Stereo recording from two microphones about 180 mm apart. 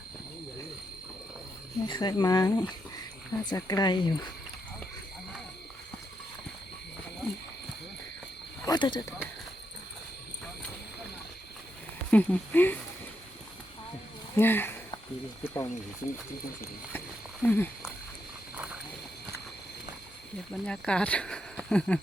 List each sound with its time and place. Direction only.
1.9 s speech: 20° left (ahead or behind)
8.6 s speech: 25° left (ahead or behind)
12.1 s speech: 10° left (ahead or behind)
14.3 s speech: 10° left (ahead or behind)
17.4 s speech: 10° left (ahead or behind)
18.5 s a sound: 10° right (ahead or behind)
20.5 s speech: 5° left (ahead or behind)